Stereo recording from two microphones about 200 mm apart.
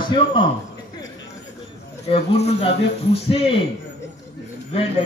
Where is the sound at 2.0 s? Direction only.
30° left (ahead or behind).